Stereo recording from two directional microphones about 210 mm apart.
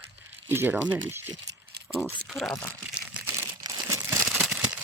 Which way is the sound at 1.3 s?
55° right (ahead or behind).